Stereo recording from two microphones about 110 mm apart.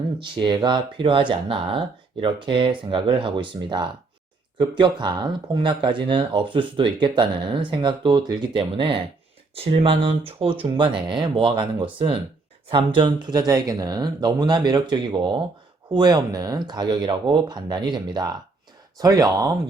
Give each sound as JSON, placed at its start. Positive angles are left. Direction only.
{"t": 0.2, "sound": "speech", "side_deg": -45}
{"t": 13.2, "sound": "speech", "side_deg": -40}